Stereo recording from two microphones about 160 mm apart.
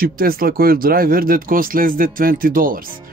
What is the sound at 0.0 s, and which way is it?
Speech, 65° right (ahead or behind).